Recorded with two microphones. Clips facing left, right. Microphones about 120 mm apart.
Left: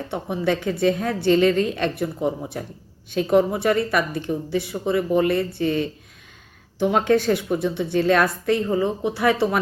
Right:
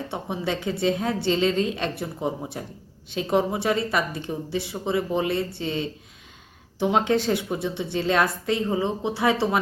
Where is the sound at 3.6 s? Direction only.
20° right (ahead or behind).